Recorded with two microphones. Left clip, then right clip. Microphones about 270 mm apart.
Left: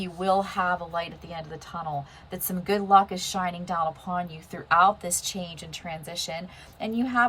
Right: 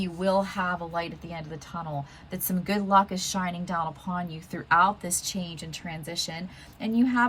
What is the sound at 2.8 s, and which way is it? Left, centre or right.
Speech, left.